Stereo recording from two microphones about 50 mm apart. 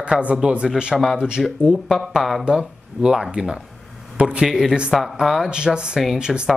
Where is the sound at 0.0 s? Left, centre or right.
Right.